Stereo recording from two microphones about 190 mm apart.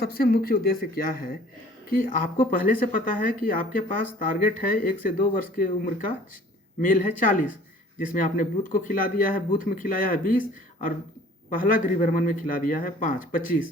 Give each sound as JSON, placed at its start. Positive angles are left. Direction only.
{"t": 0.0, "sound": "speech", "side_deg": 50}